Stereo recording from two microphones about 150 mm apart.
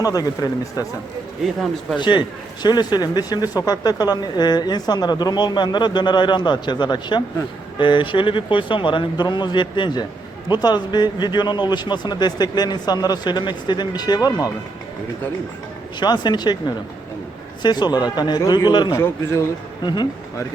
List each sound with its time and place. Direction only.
0.0 s speech: 25° left (ahead or behind)
2.0 s speech: 30° left (ahead or behind)
16.0 s speech: 30° left (ahead or behind)
18.9 s speech: 20° left (ahead or behind)
19.8 s speech: 30° left (ahead or behind)